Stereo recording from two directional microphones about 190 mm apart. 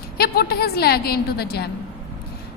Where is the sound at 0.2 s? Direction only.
55° left (ahead or behind).